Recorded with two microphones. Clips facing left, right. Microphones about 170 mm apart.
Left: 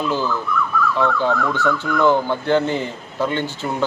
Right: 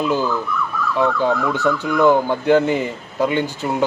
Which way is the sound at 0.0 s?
10° right (ahead or behind).